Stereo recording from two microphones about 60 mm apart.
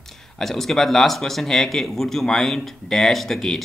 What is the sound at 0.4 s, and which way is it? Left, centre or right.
Speech, centre.